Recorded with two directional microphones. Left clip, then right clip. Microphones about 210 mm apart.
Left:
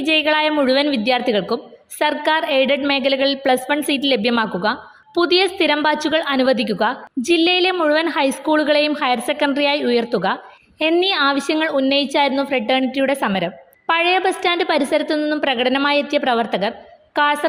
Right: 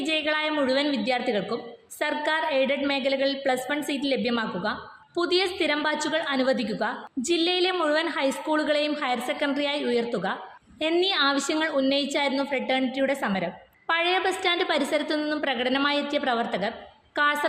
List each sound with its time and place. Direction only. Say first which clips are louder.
0.0 s a woman's voice: left 9 dB; 40° left (ahead or behind)